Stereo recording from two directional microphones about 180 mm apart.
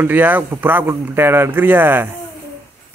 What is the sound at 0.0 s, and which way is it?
Speech, 10° right (ahead or behind).